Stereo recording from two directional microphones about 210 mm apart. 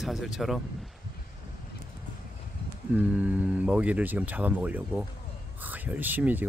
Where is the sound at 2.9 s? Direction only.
5° right (ahead or behind).